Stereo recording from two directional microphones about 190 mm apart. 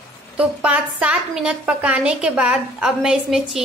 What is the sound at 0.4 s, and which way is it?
A woman's voice, 5° right (ahead or behind).